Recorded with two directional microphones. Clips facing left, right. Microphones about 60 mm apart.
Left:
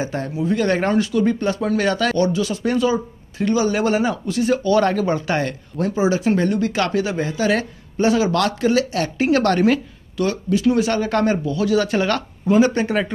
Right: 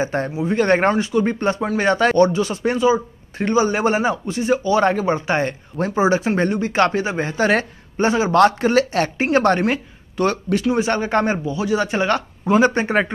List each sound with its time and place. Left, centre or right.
0.0 s a woman's voice: right
9.3 s speech: right
10.1 s speech: right
10.8 s speech: right
12.6 s a woman's voice: right